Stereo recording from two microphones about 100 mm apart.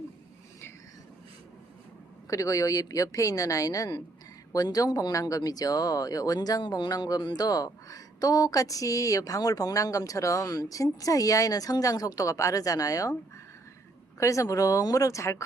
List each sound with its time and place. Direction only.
2.3 s speech: 35° left (ahead or behind)
14.2 s speech: 30° left (ahead or behind)